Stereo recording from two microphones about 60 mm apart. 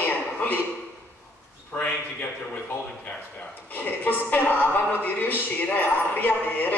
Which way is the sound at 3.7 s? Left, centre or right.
Left.